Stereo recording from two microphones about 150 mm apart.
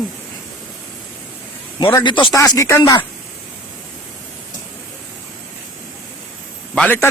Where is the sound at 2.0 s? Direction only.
35° left (ahead or behind).